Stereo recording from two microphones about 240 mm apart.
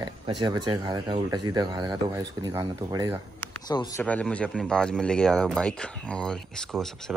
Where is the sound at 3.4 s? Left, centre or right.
Centre.